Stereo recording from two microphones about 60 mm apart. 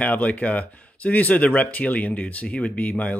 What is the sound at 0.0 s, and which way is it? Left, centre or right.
Speech, left.